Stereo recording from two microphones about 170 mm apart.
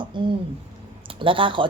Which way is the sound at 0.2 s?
30° right (ahead or behind).